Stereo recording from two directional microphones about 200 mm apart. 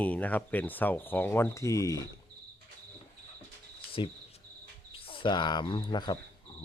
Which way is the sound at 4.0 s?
25° left (ahead or behind).